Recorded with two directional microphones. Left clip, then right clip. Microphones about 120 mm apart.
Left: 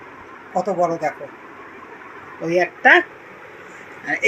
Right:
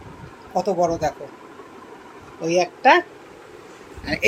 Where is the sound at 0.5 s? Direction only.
25° right (ahead or behind).